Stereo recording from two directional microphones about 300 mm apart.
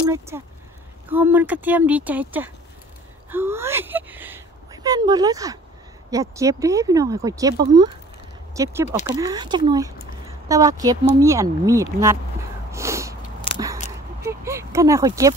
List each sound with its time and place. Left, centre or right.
0.3 s speech: centre
12.7 s snort: centre
13.5 s biting: centre
14.2 s speech: centre